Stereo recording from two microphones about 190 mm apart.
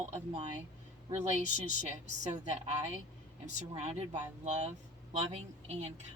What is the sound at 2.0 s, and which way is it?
Speech, 40° right (ahead or behind).